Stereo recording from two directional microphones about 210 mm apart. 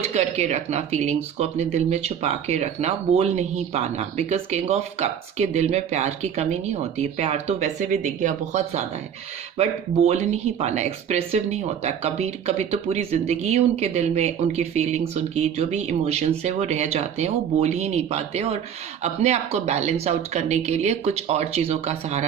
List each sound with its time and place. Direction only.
0.1 s speech: 30° right (ahead or behind)